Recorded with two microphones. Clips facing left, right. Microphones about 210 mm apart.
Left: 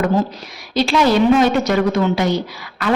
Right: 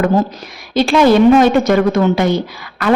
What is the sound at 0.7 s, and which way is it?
A woman's voice, 50° right (ahead or behind).